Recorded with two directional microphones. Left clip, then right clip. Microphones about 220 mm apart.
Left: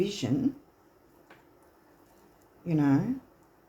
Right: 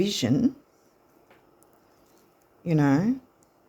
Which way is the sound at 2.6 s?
50° right (ahead or behind).